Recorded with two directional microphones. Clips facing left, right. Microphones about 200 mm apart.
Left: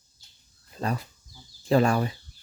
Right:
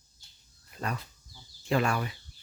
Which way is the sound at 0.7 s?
30° left (ahead or behind).